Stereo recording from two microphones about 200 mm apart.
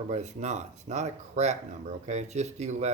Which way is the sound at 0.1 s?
35° right (ahead or behind).